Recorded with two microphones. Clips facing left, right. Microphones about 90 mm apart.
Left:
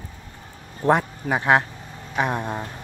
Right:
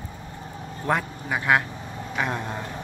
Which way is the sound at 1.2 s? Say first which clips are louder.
Left 3 dB; 30° left (ahead or behind).